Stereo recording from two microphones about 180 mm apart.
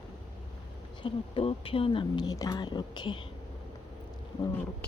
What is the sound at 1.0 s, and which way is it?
A woman's voice, 30° left (ahead or behind).